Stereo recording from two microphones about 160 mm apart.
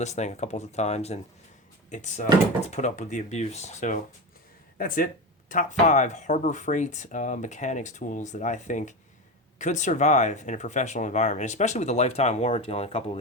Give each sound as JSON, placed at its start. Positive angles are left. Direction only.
{"t": 0.0, "sound": "speech", "side_deg": 45}